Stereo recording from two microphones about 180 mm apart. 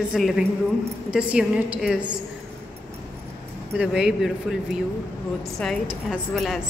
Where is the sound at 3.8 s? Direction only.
5° right (ahead or behind).